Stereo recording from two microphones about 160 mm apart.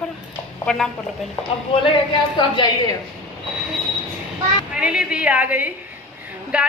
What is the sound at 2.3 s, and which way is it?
Speech, 30° left (ahead or behind).